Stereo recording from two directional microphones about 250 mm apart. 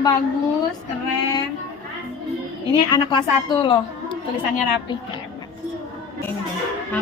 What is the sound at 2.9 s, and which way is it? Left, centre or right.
A woman's voice, centre.